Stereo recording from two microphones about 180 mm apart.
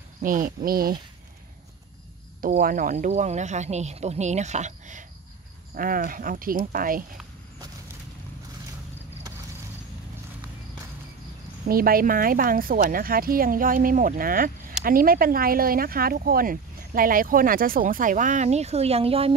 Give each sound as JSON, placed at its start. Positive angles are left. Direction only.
{"t": 0.2, "sound": "speech", "side_deg": -50}
{"t": 2.6, "sound": "speech", "side_deg": -50}
{"t": 11.6, "sound": "speech", "side_deg": -55}